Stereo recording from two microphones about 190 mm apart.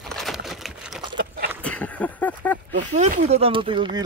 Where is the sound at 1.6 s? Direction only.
5° left (ahead or behind).